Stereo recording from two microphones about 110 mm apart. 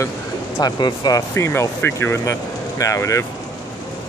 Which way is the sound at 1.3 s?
25° left (ahead or behind).